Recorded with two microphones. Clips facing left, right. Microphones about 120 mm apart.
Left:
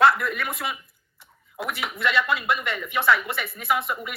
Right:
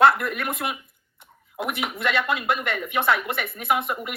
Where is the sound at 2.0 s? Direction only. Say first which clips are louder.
Left 2 dB; 50° right (ahead or behind).